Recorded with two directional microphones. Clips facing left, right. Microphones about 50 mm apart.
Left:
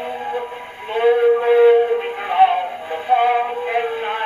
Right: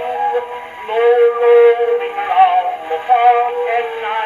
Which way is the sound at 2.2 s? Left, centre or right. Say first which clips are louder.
Right 4 dB; right.